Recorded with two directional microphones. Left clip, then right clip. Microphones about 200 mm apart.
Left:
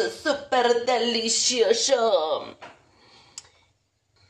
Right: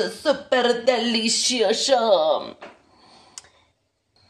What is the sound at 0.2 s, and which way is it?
A woman's voice, 65° right (ahead or behind).